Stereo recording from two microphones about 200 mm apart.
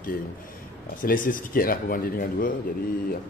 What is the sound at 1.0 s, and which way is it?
A man's voice, 45° left (ahead or behind).